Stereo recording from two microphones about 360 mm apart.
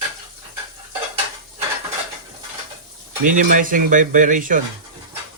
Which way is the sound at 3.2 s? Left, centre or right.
Right.